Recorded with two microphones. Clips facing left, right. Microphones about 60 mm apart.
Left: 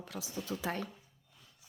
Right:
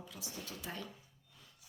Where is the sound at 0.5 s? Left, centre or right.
Left.